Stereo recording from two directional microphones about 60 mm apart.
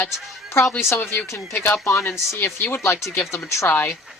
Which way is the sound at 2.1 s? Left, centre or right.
Left.